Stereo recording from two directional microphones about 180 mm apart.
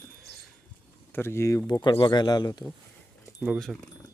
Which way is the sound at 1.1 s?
15° left (ahead or behind).